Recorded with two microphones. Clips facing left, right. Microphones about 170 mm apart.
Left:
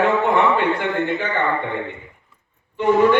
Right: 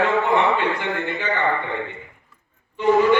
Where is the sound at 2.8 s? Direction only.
60° left (ahead or behind).